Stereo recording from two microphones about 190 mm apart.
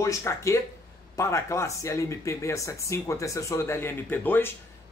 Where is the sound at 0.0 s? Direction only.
15° left (ahead or behind).